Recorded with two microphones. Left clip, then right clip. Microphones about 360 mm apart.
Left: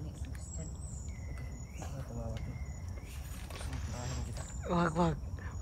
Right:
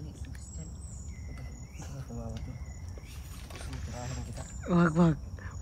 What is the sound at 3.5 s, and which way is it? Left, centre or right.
Speech, centre.